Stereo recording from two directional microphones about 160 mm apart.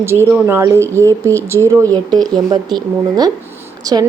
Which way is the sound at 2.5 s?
25° right (ahead or behind).